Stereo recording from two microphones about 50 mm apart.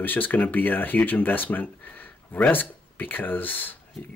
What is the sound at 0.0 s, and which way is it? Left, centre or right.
Speech, left.